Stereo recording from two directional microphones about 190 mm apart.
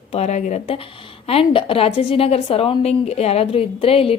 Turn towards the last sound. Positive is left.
turn(degrees=30)  # may be behind; listen again after turning